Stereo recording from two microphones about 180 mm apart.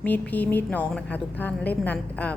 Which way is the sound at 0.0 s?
10° left (ahead or behind).